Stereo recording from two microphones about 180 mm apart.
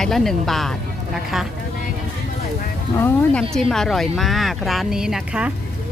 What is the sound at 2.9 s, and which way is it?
Speech, 10° left (ahead or behind).